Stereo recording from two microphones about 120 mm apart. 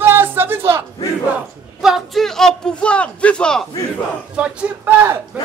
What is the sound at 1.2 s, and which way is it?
A man's voice, 10° right (ahead or behind).